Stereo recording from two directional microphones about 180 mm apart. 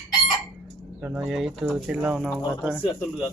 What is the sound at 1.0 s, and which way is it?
Speech, 5° right (ahead or behind).